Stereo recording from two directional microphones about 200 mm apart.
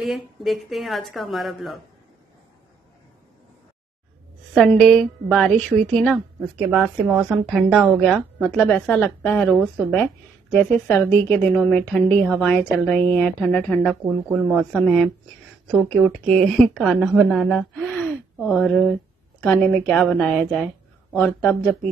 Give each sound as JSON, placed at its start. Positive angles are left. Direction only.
{"t": 0.0, "sound": "a woman's voice", "side_deg": 0}
{"t": 4.6, "sound": "a woman's voice", "side_deg": 0}
{"t": 16.1, "sound": "a woman's voice", "side_deg": 5}